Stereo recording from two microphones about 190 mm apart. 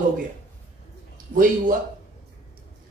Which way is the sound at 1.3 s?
45° right (ahead or behind).